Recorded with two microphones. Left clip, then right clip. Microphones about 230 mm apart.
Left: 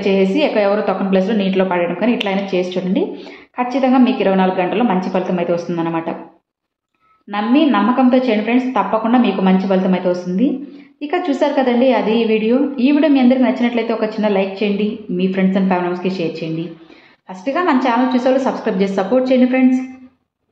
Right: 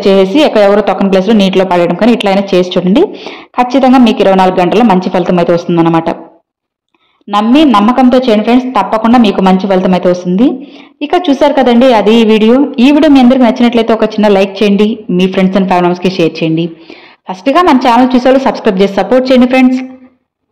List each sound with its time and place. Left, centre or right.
0.0 s a woman's voice: right
7.7 s a woman's voice: right